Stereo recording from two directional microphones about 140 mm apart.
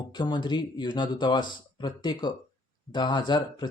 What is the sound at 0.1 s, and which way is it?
Speech, 30° left (ahead or behind).